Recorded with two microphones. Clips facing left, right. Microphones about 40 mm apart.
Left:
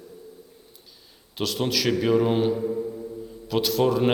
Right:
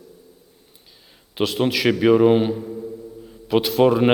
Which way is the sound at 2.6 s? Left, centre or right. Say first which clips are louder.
Left 5 dB; centre.